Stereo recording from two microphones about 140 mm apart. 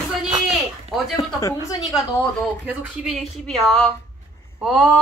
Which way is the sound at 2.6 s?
10° right (ahead or behind).